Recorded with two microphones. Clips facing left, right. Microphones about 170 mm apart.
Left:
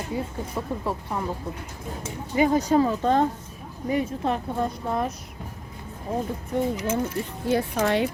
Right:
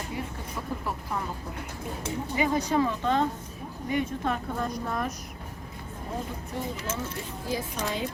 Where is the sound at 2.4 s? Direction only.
40° left (ahead or behind).